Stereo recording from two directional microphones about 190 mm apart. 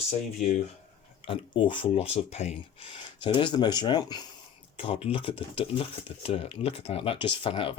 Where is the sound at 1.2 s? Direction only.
25° left (ahead or behind).